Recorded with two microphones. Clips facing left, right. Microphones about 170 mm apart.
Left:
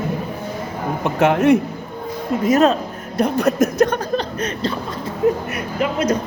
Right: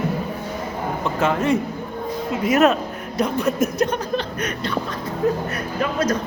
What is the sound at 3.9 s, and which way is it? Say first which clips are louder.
Speech: left 2 dB; 30° left (ahead or behind).